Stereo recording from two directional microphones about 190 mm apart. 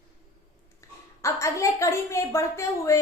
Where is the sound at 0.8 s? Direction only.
15° left (ahead or behind).